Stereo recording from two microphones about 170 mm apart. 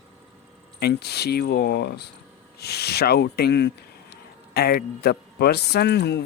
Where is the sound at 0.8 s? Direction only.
70° left (ahead or behind).